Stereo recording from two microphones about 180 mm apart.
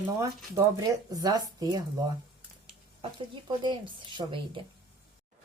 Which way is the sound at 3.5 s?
25° right (ahead or behind).